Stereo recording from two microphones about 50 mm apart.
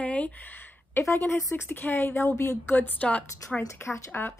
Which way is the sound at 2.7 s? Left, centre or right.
Left.